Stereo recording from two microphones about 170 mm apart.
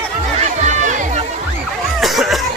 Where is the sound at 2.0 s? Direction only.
Centre (ahead or behind).